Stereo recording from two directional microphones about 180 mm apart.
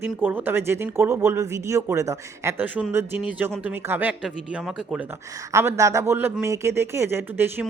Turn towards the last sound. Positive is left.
turn(degrees=-10)  # may be behind; listen again after turning